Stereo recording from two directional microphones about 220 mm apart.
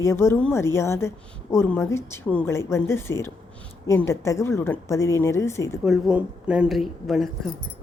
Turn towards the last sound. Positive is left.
turn(degrees=0)  # may be behind; listen again after turning